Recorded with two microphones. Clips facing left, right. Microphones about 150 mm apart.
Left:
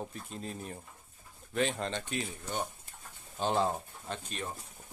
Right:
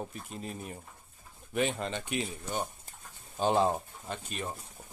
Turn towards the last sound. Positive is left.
turn(degrees=-5)  # may be behind; listen again after turning